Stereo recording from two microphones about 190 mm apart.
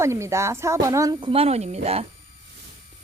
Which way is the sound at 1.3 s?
30° right (ahead or behind).